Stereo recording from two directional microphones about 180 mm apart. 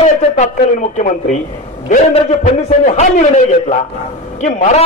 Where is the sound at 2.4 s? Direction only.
40° left (ahead or behind).